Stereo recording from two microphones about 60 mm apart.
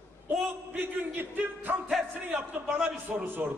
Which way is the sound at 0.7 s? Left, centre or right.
Right.